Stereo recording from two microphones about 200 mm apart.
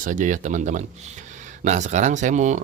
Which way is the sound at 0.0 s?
40° right (ahead or behind).